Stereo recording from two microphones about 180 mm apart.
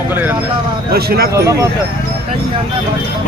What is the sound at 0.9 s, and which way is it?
Speech, 60° right (ahead or behind).